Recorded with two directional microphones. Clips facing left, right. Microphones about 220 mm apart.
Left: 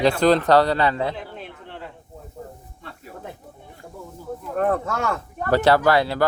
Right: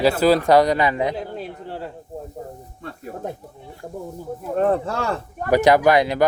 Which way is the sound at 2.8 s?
45° right (ahead or behind).